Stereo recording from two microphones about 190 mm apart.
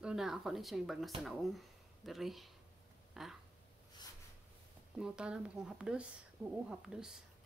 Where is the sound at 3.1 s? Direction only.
Centre (ahead or behind).